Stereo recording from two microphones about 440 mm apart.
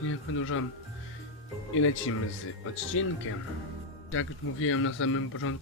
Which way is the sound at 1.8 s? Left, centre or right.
Left.